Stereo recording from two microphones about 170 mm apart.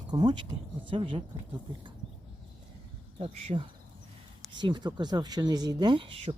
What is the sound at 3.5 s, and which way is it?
Speech, 30° right (ahead or behind).